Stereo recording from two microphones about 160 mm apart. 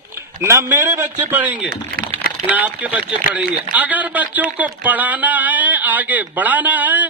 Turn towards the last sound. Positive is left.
turn(degrees=-10)  # may be behind; listen again after turning